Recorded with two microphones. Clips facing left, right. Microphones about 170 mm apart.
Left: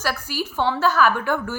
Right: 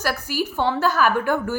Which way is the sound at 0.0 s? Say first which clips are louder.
Right 2 dB; 45° right (ahead or behind).